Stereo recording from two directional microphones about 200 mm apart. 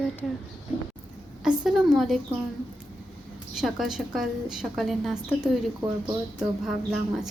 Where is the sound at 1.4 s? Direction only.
5° right (ahead or behind).